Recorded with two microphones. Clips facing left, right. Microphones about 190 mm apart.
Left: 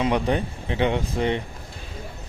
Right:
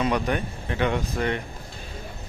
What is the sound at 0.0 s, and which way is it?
Speech, 25° left (ahead or behind).